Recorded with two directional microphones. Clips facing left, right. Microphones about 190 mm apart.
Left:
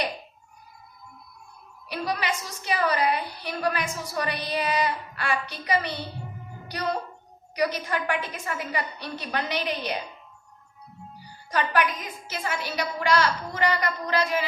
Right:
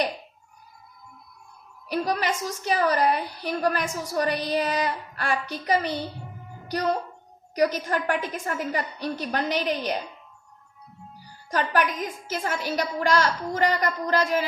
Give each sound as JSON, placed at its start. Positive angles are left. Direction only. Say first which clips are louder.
{"t": 1.9, "sound": "a woman's voice", "louder": "right 3 dB", "side_deg": -45}
{"t": 7.5, "sound": "a woman's voice", "louder": "right 3 dB", "side_deg": -45}
{"t": 11.5, "sound": "a woman's voice", "louder": "right 1 dB", "side_deg": -45}